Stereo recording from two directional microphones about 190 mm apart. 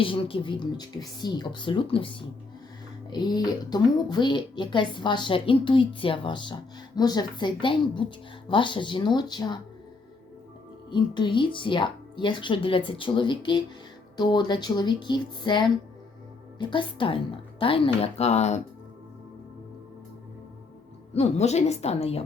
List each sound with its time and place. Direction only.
0.0 s a woman's voice: 30° left (ahead or behind)
10.9 s a woman's voice: 25° left (ahead or behind)
21.1 s a woman's voice: 35° left (ahead or behind)